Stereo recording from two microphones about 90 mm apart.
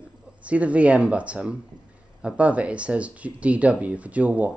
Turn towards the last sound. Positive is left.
turn(degrees=-15)  # may be behind; listen again after turning